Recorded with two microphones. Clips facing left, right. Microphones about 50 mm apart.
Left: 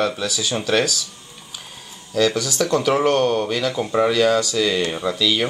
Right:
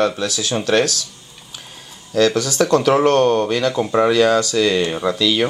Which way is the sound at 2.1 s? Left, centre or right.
Centre.